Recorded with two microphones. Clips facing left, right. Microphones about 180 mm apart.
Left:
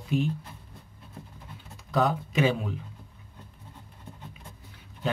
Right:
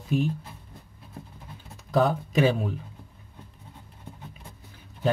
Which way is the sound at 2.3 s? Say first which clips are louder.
Right 3 dB; 40° right (ahead or behind).